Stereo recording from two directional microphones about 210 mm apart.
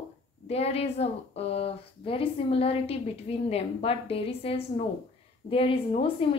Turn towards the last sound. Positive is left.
turn(degrees=25)  # may be behind; listen again after turning